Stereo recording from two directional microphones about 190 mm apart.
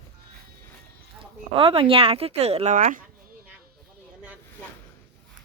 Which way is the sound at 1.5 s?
30° right (ahead or behind).